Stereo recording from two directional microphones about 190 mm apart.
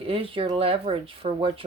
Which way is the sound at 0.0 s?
30° right (ahead or behind).